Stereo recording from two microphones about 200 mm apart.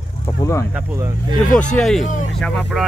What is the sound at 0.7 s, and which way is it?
Speech, 15° right (ahead or behind).